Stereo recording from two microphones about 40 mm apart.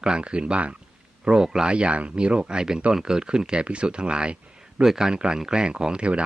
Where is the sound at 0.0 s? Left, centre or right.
Right.